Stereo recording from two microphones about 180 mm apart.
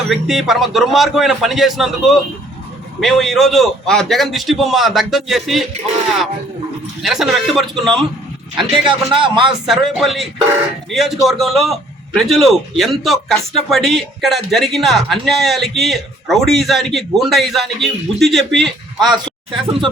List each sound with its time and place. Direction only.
0.1 s a man's voice: centre (ahead or behind)
7.0 s a man's voice: centre (ahead or behind)
8.7 s a man's voice: 25° right (ahead or behind)
9.5 s a man's voice: centre (ahead or behind)